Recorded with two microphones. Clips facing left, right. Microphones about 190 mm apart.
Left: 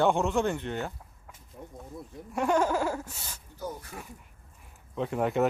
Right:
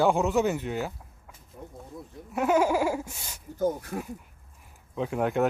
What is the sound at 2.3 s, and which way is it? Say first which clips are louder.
Speech: right 3 dB; 5° right (ahead or behind).